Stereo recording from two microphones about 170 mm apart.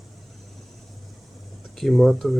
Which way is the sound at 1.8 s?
Centre (ahead or behind).